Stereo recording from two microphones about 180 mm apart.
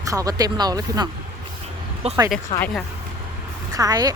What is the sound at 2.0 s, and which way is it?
Speech, 35° right (ahead or behind).